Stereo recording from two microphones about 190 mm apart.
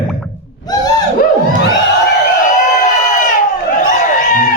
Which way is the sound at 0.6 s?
20° left (ahead or behind).